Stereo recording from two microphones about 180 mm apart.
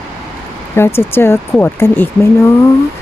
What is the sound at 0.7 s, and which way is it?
Speech, 15° left (ahead or behind).